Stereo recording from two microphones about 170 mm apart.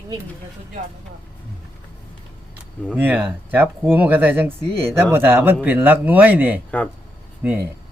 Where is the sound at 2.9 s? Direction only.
10° right (ahead or behind).